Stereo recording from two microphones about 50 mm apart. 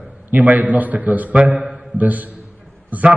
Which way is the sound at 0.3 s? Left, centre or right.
Right.